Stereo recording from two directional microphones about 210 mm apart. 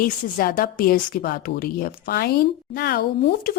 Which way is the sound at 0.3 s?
40° left (ahead or behind).